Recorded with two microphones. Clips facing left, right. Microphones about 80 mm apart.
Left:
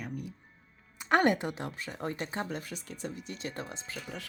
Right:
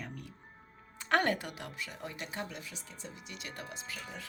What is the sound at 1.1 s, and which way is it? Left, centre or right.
Speech, left.